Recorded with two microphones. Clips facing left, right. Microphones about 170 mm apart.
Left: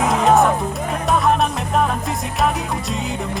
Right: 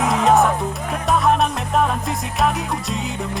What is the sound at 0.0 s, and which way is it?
Music, centre (ahead or behind).